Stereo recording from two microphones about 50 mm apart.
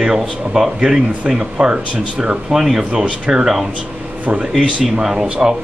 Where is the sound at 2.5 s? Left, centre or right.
Centre.